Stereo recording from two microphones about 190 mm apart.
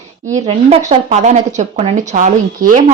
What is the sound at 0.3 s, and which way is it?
Speech, 30° right (ahead or behind).